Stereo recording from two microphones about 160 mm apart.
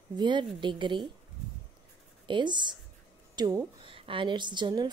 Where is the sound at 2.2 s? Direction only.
30° right (ahead or behind).